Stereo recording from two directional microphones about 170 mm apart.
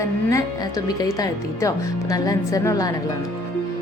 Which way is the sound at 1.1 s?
20° left (ahead or behind).